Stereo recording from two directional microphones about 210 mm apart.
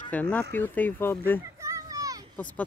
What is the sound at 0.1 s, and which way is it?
Speech, 5° left (ahead or behind).